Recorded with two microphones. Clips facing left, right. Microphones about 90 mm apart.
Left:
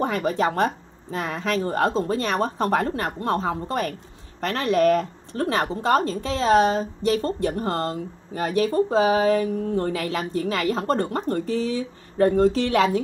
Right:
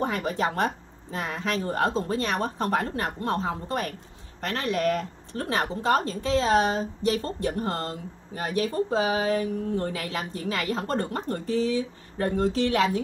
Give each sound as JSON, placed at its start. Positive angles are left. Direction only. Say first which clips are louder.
{"t": 0.0, "sound": "speech", "louder": "left 4 dB", "side_deg": 60}
{"t": 3.3, "sound": "speech", "louder": "left 5 dB", "side_deg": 55}
{"t": 4.4, "sound": "speech", "louder": "left 6 dB", "side_deg": 75}